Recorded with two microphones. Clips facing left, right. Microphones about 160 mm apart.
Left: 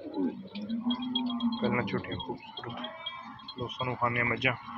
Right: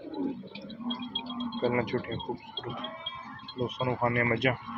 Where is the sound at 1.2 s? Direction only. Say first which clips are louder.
Left 5 dB; 30° left (ahead or behind).